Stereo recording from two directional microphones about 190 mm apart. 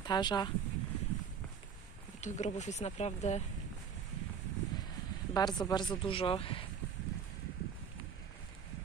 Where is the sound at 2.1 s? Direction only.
40° left (ahead or behind).